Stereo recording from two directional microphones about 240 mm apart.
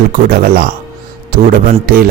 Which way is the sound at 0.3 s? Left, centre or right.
Right.